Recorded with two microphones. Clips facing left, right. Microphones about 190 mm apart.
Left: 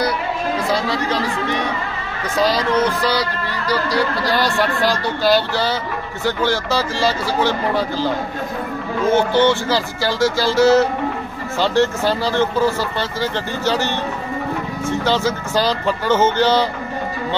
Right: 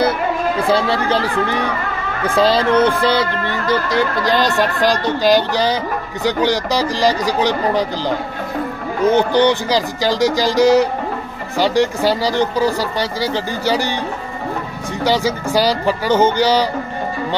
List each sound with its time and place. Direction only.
0.7 s music: 30° right (ahead or behind)
2.3 s music: 30° right (ahead or behind)
4.8 s speech: 15° right (ahead or behind)
9.1 s speech: 15° right (ahead or behind)